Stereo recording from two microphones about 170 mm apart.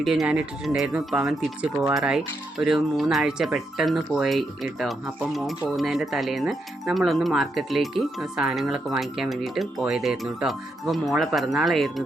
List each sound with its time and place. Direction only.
0.0 s speech: centre (ahead or behind)